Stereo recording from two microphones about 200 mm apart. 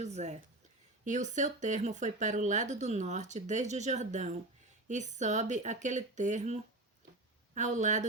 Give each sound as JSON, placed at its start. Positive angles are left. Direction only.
{"t": 0.0, "sound": "speech", "side_deg": -35}